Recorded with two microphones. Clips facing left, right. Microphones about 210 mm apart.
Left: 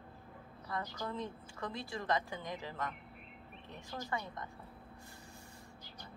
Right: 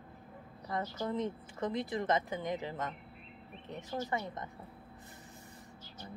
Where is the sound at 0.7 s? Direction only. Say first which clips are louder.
Right 5 dB; 20° right (ahead or behind).